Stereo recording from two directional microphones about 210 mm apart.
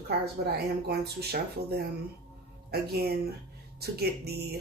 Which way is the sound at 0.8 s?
50° right (ahead or behind).